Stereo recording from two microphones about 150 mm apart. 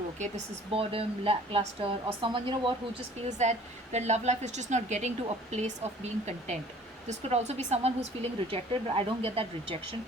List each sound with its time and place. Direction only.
0.7 s a woman's voice: 40° right (ahead or behind)
3.2 s a woman's voice: 50° right (ahead or behind)